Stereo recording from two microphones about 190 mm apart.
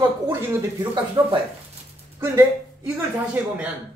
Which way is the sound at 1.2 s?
15° right (ahead or behind).